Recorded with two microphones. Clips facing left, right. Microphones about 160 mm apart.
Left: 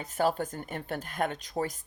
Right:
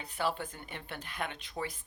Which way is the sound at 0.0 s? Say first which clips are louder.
Left 6 dB; 45° left (ahead or behind).